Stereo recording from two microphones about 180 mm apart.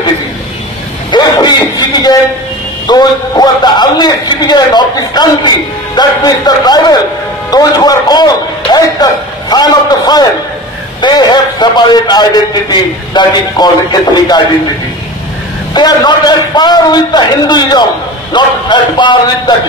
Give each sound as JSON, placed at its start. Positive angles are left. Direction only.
{"t": 1.1, "sound": "a sound", "side_deg": 25}
{"t": 2.9, "sound": "a man's voice", "side_deg": 20}
{"t": 15.7, "sound": "a man's voice", "side_deg": 25}